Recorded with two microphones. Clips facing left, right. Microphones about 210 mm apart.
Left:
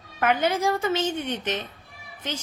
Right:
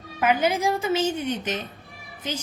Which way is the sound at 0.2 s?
10° right (ahead or behind).